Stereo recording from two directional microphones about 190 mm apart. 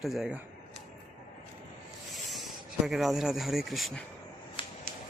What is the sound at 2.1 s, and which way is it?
Speech, centre (ahead or behind).